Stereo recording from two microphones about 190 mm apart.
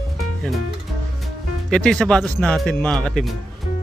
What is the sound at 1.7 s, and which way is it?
Speech, 5° left (ahead or behind).